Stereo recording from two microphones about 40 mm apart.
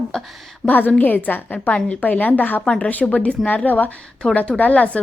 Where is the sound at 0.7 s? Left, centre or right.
Left.